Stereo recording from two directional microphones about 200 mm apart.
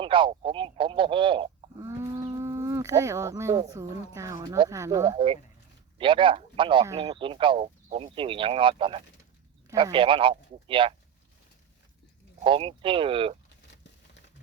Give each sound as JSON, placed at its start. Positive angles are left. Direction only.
{"t": 0.0, "sound": "speech", "side_deg": -25}
{"t": 1.8, "sound": "speech", "side_deg": -15}
{"t": 12.4, "sound": "speech", "side_deg": -25}